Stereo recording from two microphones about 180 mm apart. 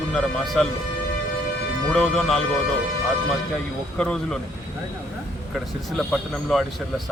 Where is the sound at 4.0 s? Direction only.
5° left (ahead or behind).